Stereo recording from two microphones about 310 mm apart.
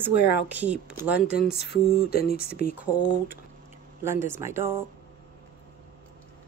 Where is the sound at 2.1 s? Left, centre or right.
Left.